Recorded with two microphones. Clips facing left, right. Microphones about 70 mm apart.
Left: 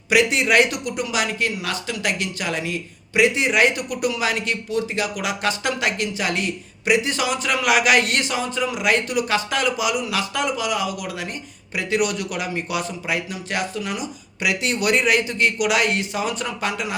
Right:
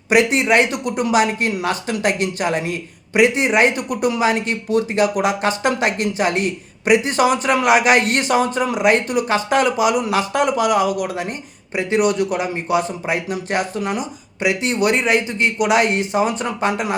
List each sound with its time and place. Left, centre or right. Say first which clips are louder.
0.1 s speech: right 3 dB; right
0.4 s speech: right 2 dB; right